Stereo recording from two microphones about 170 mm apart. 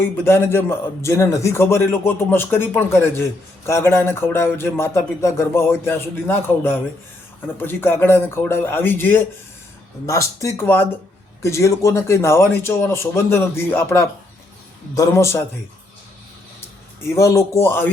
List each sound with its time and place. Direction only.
0.0 s a man's voice: 15° left (ahead or behind)
17.2 s a man's voice: 20° left (ahead or behind)